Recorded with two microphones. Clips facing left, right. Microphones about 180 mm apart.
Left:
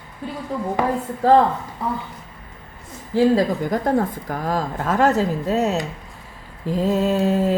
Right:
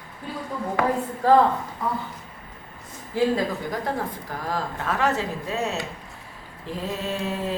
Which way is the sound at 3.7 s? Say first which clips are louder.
Left 8 dB; 45° left (ahead or behind).